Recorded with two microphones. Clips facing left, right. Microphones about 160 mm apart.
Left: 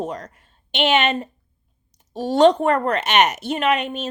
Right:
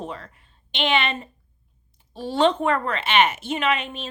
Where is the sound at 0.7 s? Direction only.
55° left (ahead or behind).